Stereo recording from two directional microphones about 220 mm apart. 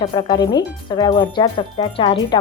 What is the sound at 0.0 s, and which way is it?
Speech, 20° left (ahead or behind).